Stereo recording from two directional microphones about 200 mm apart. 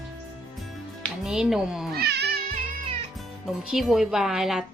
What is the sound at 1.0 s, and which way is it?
Speech, centre (ahead or behind).